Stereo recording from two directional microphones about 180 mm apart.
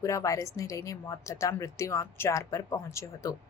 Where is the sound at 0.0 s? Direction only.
15° left (ahead or behind).